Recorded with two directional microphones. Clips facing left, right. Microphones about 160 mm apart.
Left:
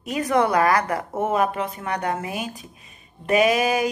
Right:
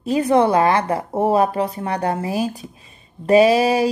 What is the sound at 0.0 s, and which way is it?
A woman's voice, 30° right (ahead or behind).